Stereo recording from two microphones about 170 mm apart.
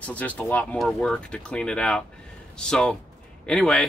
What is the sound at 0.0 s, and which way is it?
Speech, 10° left (ahead or behind).